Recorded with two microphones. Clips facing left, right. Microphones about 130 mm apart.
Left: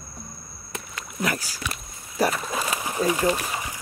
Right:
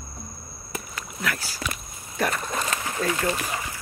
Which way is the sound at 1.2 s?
15° left (ahead or behind).